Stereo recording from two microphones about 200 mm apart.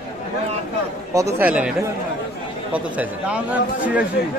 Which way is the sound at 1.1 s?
10° right (ahead or behind).